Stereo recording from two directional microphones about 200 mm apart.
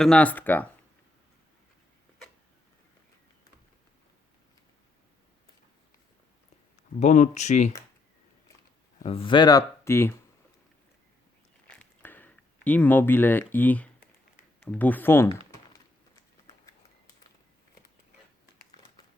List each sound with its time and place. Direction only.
0.0 s speech: 5° left (ahead or behind)
7.0 s speech: 35° left (ahead or behind)
9.0 s speech: 25° left (ahead or behind)
11.7 s a sound: 10° left (ahead or behind)
14.6 s speech: 10° left (ahead or behind)